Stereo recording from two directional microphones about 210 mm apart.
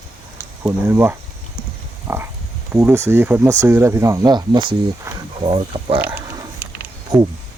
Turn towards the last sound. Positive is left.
turn(degrees=-5)  # may be behind; listen again after turning